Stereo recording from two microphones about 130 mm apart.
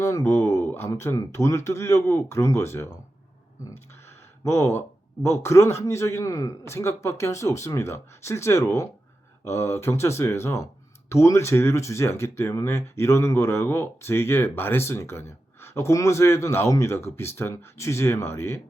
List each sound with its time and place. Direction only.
0.0 s speech: 25° left (ahead or behind)
4.4 s speech: 20° left (ahead or behind)